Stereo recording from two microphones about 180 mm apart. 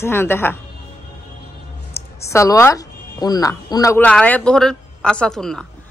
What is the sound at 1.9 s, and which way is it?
A woman's voice, 15° left (ahead or behind).